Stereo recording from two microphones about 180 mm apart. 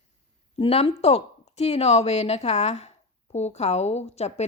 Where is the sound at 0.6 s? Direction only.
30° left (ahead or behind).